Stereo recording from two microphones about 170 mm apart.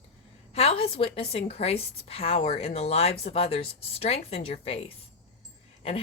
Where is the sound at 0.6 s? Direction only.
35° left (ahead or behind).